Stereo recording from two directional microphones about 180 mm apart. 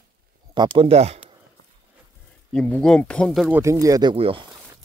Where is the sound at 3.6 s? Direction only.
15° right (ahead or behind).